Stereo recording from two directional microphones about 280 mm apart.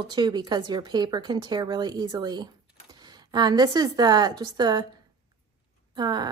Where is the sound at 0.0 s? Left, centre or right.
Centre.